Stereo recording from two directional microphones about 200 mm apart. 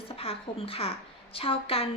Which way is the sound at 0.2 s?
30° left (ahead or behind).